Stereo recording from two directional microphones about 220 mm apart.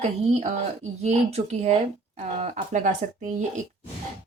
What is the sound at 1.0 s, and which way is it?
Speech, 30° right (ahead or behind).